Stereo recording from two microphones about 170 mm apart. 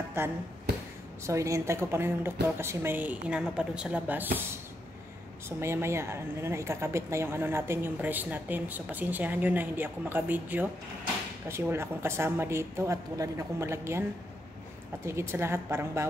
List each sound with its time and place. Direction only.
0.2 s speech: 15° right (ahead or behind)
5.6 s speech: 15° right (ahead or behind)
15.0 s speech: 15° right (ahead or behind)